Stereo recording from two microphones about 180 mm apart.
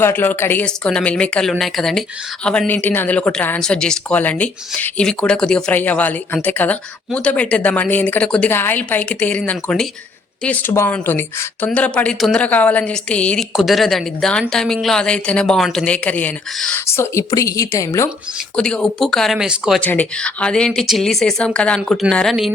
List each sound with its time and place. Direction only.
0.0 s speech: 10° left (ahead or behind)
18.5 s speech: 5° left (ahead or behind)
19.8 s speech: 10° left (ahead or behind)